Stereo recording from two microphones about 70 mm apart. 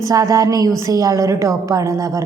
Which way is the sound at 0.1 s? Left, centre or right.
Right.